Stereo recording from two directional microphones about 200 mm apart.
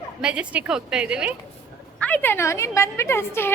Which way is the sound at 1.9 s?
5° left (ahead or behind).